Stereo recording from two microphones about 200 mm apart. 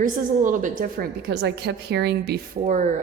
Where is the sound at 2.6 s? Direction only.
35° right (ahead or behind).